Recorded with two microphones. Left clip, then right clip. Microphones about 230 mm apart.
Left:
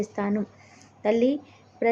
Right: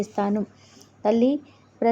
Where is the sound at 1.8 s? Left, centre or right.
Centre.